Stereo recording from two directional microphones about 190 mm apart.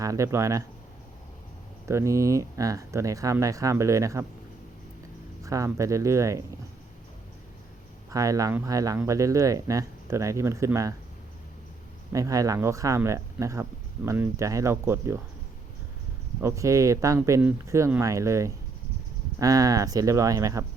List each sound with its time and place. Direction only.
0.0 s speech: 15° right (ahead or behind)
1.9 s speech: 15° right (ahead or behind)
5.4 s speech: 15° right (ahead or behind)
8.1 s speech: 20° right (ahead or behind)
12.1 s speech: 20° right (ahead or behind)
16.4 s speech: 15° right (ahead or behind)